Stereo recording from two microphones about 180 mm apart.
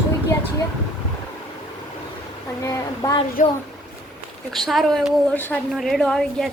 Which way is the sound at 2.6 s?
20° left (ahead or behind).